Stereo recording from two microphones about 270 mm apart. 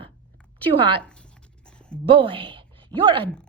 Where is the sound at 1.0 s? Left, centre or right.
Centre.